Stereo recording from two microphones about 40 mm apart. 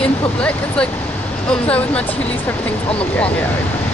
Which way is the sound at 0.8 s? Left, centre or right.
Left.